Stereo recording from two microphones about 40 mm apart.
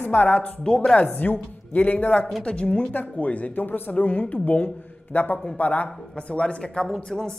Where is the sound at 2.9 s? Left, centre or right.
Left.